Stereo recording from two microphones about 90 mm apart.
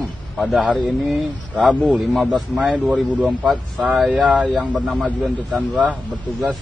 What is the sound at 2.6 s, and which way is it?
Speech, 10° right (ahead or behind).